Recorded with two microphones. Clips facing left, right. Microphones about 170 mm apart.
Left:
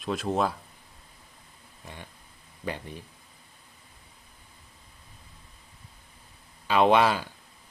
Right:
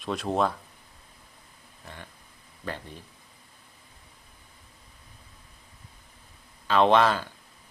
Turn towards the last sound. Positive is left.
turn(degrees=10)  # may be behind; listen again after turning